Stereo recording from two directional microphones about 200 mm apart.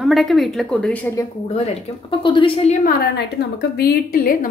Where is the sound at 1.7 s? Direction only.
25° left (ahead or behind).